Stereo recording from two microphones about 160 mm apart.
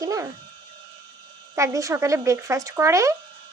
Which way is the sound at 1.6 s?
20° right (ahead or behind).